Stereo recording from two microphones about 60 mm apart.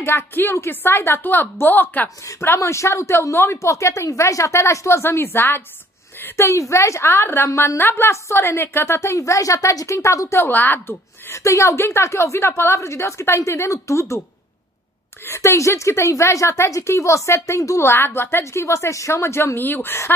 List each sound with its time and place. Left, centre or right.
0.0 s a woman's voice: left
2.4 s a woman's voice: left
6.3 s a woman's voice: left
10.4 s a woman's voice: left
11.3 s a woman's voice: left
15.2 s a woman's voice: left
17.8 s a woman's voice: left
18.4 s a woman's voice: left